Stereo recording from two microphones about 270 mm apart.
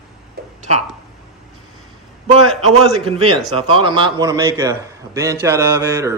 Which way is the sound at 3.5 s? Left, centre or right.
Centre.